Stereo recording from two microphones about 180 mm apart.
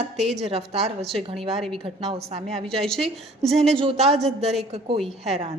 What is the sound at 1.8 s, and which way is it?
Speech, 35° right (ahead or behind).